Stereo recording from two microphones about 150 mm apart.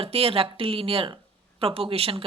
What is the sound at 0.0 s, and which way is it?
Speech, 40° right (ahead or behind).